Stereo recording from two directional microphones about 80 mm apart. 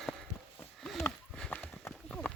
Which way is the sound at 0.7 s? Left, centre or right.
Centre.